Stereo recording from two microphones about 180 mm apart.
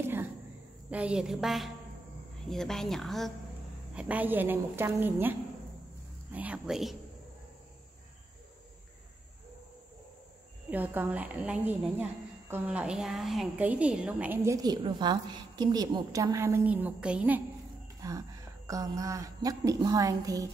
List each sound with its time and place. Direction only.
0.0 s a sound: 10° right (ahead or behind)
0.8 s speech: 5° right (ahead or behind)
10.7 s speech: 10° right (ahead or behind)
18.0 s a woman's voice: 20° right (ahead or behind)